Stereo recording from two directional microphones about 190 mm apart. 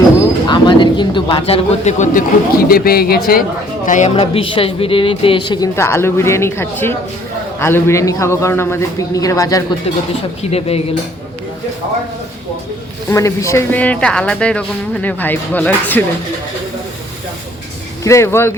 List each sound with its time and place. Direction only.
0.2 s a sound: 25° left (ahead or behind)
2.6 s speech: 50° left (ahead or behind)
4.1 s speech: 25° left (ahead or behind)
10.5 s speech: 30° left (ahead or behind)
13.1 s speech: 15° left (ahead or behind)
18.0 s speech: 15° left (ahead or behind)